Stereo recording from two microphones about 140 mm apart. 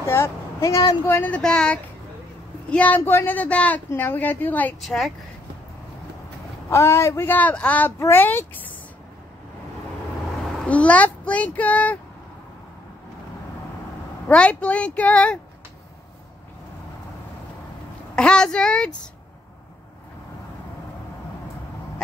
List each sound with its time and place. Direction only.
0.0 s a woman's voice: 20° left (ahead or behind)
4.8 s speech: centre (ahead or behind)
6.7 s a woman's voice: 20° left (ahead or behind)
10.4 s speech: 5° left (ahead or behind)
14.2 s a woman's voice: 10° left (ahead or behind)
18.1 s a woman's voice: 5° left (ahead or behind)